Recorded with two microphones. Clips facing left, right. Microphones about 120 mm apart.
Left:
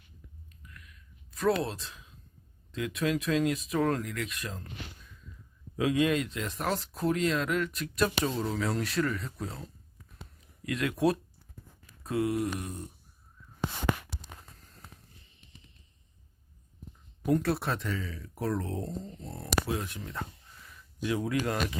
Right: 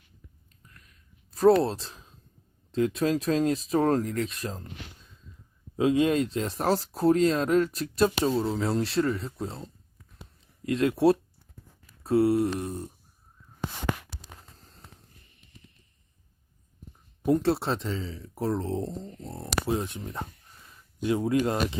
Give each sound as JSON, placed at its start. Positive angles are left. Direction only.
{"t": 0.6, "sound": "a sound", "side_deg": -35}
{"t": 2.7, "sound": "speech", "side_deg": -35}
{"t": 5.7, "sound": "speech", "side_deg": -30}
{"t": 14.5, "sound": "walk", "side_deg": -30}
{"t": 17.2, "sound": "speech", "side_deg": -25}